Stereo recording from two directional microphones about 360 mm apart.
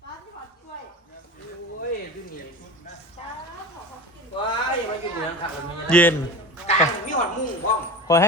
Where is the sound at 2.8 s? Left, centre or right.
Centre.